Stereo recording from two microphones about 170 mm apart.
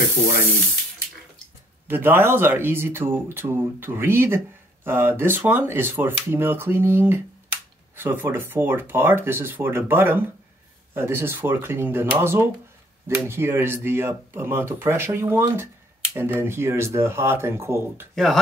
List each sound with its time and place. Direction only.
1.9 s speech: 10° right (ahead or behind)
18.1 s speech: centre (ahead or behind)